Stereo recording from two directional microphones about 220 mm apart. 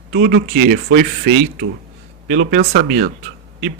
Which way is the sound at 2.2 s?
45° right (ahead or behind).